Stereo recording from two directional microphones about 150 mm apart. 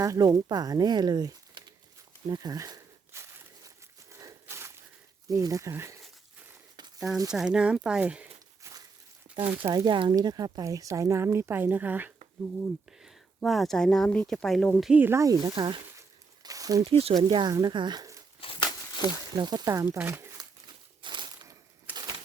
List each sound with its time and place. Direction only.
0.0 s speech: 25° right (ahead or behind)
2.2 s a sound: 25° right (ahead or behind)
5.3 s speech: 20° right (ahead or behind)
7.3 s speech: 5° right (ahead or behind)
9.7 s speech: 30° right (ahead or behind); by 12.1 s 10° right (ahead or behind)
13.0 s speech: centre (ahead or behind)
14.9 s speech: 15° right (ahead or behind); by 15.8 s 30° right (ahead or behind)
15.8 s a sound: 20° right (ahead or behind)
16.9 s speech: 40° right (ahead or behind)
17.2 s speech: 30° right (ahead or behind)
18.3 s a sound: 35° left (ahead or behind)
19.4 s speech: 25° right (ahead or behind)
21.0 s crushing: 30° right (ahead or behind)
21.9 s typewriter: 10° right (ahead or behind)